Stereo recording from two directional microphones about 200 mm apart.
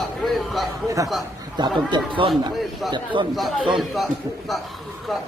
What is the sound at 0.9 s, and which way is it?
Speech, 15° right (ahead or behind).